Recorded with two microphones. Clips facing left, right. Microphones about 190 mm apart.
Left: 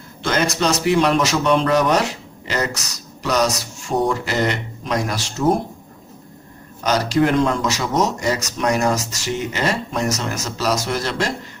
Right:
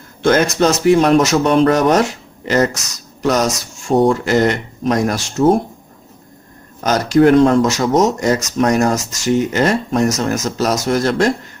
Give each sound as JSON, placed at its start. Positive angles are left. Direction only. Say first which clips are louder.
{"t": 0.2, "sound": "speech", "louder": "right 7 dB", "side_deg": -50}
{"t": 6.8, "sound": "speech", "louder": "right 6 dB", "side_deg": -50}